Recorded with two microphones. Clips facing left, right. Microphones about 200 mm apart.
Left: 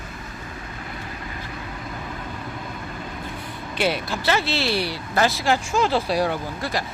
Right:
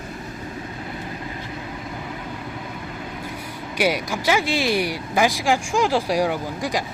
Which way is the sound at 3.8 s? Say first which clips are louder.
Right 2 dB; 15° right (ahead or behind).